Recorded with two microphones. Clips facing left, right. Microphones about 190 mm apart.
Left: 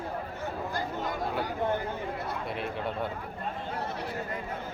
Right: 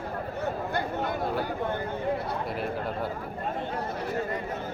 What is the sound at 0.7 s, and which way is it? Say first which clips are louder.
Speech: right 3 dB; 65° right (ahead or behind).